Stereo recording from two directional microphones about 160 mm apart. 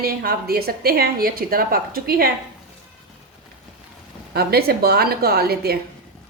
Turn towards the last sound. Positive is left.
turn(degrees=-75)  # may be behind; listen again after turning